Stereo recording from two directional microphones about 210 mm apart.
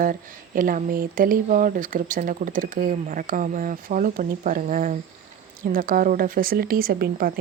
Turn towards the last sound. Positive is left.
turn(degrees=-45)  # may be behind; listen again after turning